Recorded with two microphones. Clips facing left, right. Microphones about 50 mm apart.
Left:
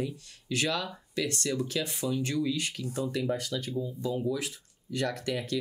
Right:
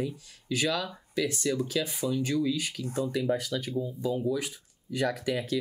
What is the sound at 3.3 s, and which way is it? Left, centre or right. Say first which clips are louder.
Speech: right 3 dB; centre.